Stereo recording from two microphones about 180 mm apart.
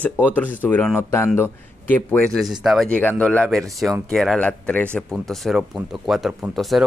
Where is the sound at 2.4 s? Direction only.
Centre (ahead or behind).